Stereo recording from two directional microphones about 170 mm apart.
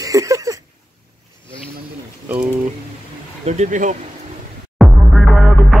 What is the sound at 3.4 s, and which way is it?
Speech, 40° right (ahead or behind).